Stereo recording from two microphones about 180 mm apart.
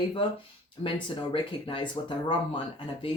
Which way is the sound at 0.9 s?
30° left (ahead or behind).